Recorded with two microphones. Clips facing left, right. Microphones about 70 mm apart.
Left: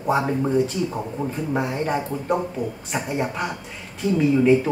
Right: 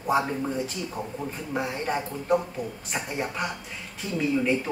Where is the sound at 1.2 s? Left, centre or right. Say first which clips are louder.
Left 9 dB; left.